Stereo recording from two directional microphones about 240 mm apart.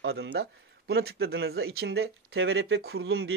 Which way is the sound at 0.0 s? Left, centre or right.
Right.